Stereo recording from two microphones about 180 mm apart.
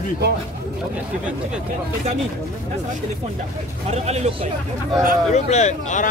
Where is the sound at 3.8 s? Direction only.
35° right (ahead or behind).